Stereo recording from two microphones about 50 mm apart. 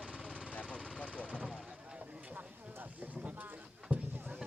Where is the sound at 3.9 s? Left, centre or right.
Right.